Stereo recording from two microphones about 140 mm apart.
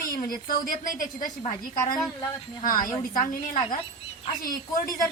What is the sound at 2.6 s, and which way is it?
Speech, 80° left.